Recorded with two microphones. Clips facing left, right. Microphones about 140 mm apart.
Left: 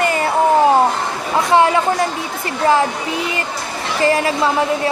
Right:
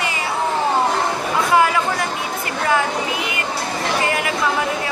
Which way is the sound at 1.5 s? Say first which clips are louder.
Left 3 dB; 25° left (ahead or behind).